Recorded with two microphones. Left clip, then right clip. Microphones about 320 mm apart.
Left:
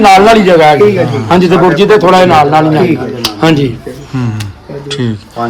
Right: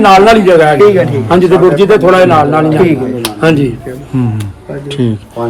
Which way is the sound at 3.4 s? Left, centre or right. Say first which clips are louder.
Even; left.